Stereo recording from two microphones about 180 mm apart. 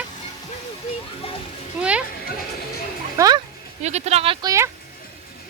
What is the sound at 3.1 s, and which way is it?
Speech, 20° right (ahead or behind).